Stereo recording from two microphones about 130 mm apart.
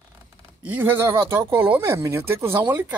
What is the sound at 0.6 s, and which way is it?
Speech, 15° right (ahead or behind).